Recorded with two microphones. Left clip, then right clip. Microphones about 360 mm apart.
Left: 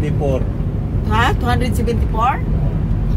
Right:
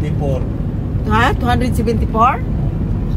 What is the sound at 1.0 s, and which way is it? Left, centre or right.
Speech, centre.